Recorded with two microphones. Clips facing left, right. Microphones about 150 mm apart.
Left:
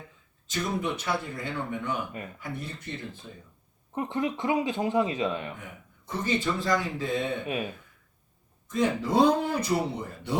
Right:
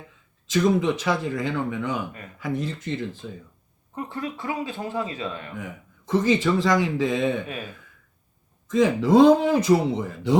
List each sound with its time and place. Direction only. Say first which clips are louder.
0.4 s a man's voice: right 9 dB; 90° right
3.9 s a man's voice: left 2 dB; 20° left (ahead or behind)
6.1 s a man's voice: right 8 dB; 90° right
8.7 s a man's voice: right 7 dB; 90° right